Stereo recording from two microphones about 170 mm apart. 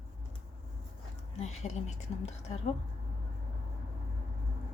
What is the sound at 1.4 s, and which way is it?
Speech, 40° left (ahead or behind).